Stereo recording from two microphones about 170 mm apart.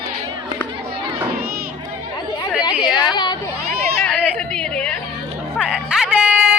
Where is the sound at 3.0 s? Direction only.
25° left (ahead or behind).